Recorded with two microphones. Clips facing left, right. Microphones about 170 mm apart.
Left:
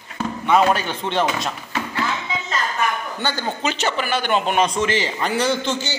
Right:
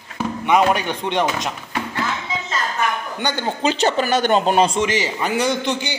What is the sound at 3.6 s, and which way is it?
Speech, 35° right (ahead or behind).